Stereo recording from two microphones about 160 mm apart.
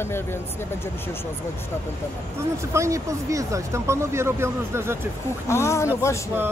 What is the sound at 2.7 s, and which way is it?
Speech, 20° right (ahead or behind).